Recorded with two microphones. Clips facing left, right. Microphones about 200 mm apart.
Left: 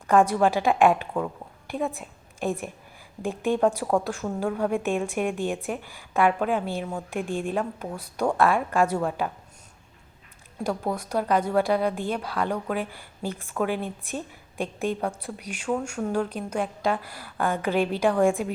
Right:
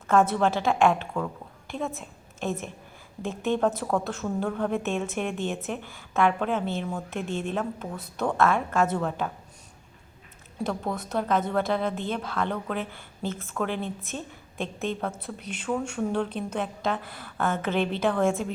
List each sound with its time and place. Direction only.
0.1 s a woman's voice: 15° left (ahead or behind)
10.6 s a woman's voice: 10° left (ahead or behind)